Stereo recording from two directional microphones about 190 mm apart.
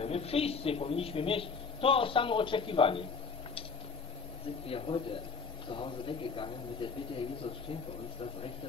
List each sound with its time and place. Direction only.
0.0 s a man's voice: 30° left (ahead or behind)
4.6 s a man's voice: 30° left (ahead or behind)